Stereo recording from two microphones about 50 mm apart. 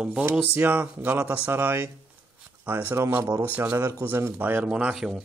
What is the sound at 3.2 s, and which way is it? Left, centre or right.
Speech, right.